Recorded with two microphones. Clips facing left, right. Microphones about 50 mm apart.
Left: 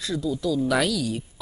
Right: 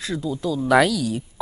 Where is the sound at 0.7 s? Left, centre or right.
Right.